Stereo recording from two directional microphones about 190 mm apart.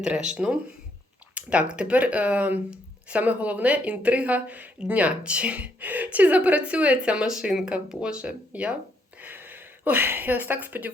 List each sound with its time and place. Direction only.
0.0 s speech: 5° right (ahead or behind)